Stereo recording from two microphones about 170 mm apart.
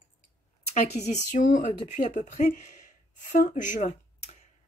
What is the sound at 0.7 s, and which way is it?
Speech, 40° left (ahead or behind).